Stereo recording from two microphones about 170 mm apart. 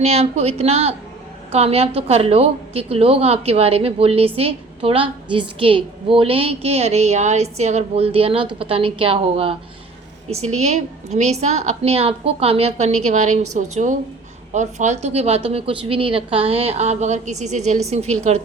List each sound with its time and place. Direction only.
0.0 s a woman's voice: 40° right (ahead or behind)